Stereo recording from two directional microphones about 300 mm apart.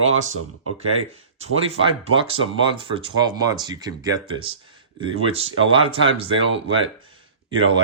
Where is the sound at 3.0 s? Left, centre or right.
Centre.